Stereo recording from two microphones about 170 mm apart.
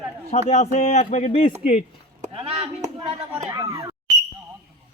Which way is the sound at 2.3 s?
35° right (ahead or behind).